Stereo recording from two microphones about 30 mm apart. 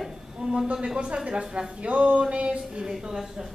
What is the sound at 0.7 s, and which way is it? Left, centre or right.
Speech, centre.